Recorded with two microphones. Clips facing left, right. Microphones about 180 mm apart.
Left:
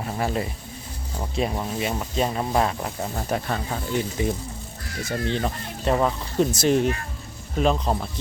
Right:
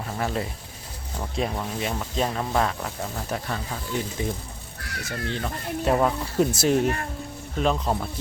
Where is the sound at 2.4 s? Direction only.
20° left (ahead or behind).